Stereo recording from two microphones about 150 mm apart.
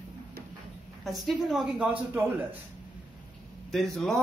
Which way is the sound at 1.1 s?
Centre (ahead or behind).